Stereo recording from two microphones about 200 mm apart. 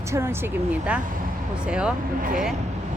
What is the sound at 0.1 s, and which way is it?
Speech, 10° right (ahead or behind).